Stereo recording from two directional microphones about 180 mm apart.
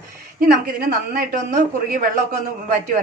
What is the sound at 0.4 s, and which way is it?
A woman's voice, 55° right (ahead or behind).